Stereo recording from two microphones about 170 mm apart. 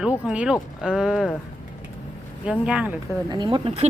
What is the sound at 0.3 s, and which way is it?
Speech, 5° right (ahead or behind).